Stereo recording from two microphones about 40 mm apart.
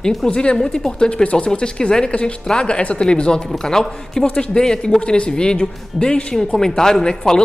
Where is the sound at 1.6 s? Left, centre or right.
Centre.